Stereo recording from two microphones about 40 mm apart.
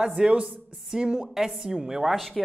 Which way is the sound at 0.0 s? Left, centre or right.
Right.